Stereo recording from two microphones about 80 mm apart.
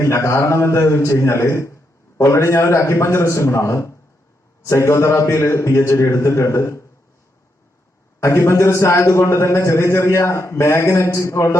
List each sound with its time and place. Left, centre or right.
0.0 s a man's voice: left
8.2 s a man's voice: left